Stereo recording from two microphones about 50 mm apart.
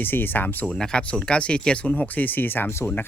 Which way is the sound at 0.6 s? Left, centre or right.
Centre.